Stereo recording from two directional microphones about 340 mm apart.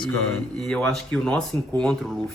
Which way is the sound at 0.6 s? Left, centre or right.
Centre.